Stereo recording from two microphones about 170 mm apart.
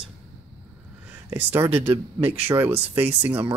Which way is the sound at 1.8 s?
35° right (ahead or behind).